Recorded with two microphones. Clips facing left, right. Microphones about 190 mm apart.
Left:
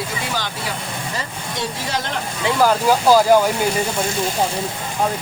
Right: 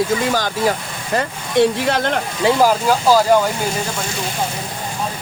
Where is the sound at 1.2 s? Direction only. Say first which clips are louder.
Right 16 dB; 60° right (ahead or behind).